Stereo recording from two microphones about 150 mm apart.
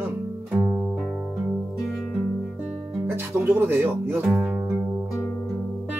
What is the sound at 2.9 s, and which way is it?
Speech, 15° right (ahead or behind).